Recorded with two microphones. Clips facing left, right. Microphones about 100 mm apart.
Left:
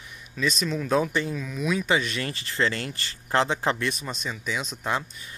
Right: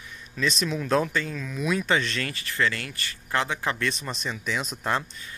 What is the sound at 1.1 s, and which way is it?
Speech, 20° left (ahead or behind).